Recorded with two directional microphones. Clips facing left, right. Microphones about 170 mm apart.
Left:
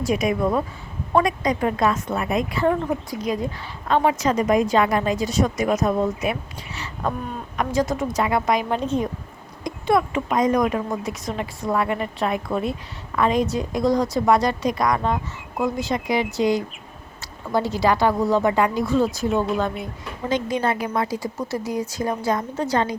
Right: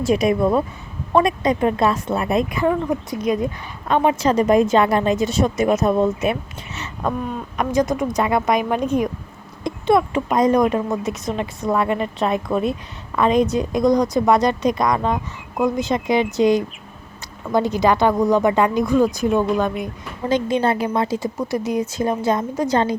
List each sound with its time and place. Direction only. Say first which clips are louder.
0.0 s speech: right 4 dB; 30° right (ahead or behind)
2.6 s speech: left 1 dB; centre (ahead or behind)
3.1 s speech: right 4 dB; 20° right (ahead or behind)
4.2 s speech: right 4 dB; 30° right (ahead or behind)
7.5 s a woman's voice: right 3 dB; 20° right (ahead or behind)
9.6 s a sound: right 3 dB; 25° right (ahead or behind)
10.2 s a woman's voice: right 3 dB; 35° right (ahead or behind); by 19.9 s 15° right (ahead or behind)
20.3 s speech: right 4 dB; 30° right (ahead or behind)
21.3 s speech: right 4 dB; 15° right (ahead or behind)